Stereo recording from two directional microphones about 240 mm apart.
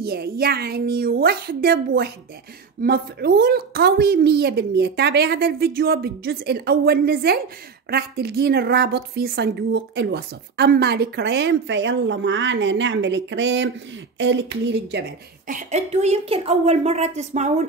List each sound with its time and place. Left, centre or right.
0.0 s a woman's voice: right